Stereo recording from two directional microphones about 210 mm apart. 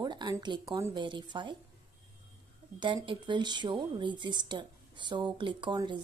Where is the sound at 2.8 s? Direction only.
20° right (ahead or behind).